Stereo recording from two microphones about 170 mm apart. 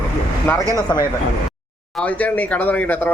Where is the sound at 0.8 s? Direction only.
25° left (ahead or behind).